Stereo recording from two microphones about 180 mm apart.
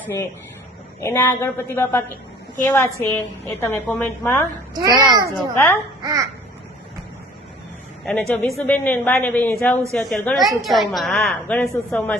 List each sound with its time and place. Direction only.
0.0 s a woman's voice: 15° left (ahead or behind)
4.7 s a child's voice: 20° right (ahead or behind)
5.2 s a woman's voice: 15° left (ahead or behind)
6.0 s a child's voice: 20° right (ahead or behind)
8.3 s a woman's voice: 5° left (ahead or behind)